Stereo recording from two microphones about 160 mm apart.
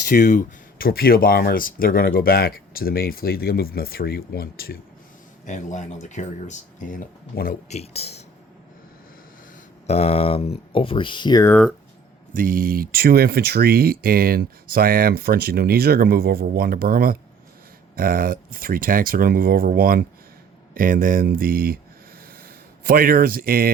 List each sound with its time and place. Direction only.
0.1 s speech: 50° left (ahead or behind)
0.8 s speech: 70° left (ahead or behind)
5.5 s speech: 50° left (ahead or behind)
7.7 s speech: 40° left (ahead or behind)
9.8 s speech: 40° left (ahead or behind); by 11.5 s 25° left (ahead or behind)
12.3 s speech: 60° right (ahead or behind)
22.8 s speech: 65° right (ahead or behind)